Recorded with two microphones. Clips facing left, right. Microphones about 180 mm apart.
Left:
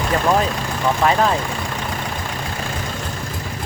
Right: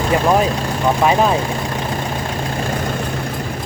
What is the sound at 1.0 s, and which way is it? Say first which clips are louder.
Speech: right 2 dB; 15° right (ahead or behind).